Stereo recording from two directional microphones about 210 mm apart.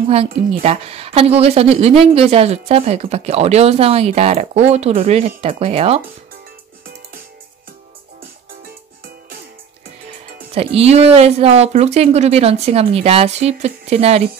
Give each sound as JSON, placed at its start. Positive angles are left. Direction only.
{"t": 0.1, "sound": "a woman's voice", "side_deg": -25}
{"t": 10.5, "sound": "a woman's voice", "side_deg": -30}